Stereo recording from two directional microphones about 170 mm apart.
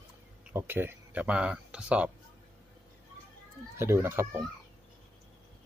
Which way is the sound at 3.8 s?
15° right (ahead or behind).